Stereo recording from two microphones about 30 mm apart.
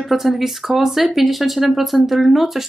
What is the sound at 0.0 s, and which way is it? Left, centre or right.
Speech, centre.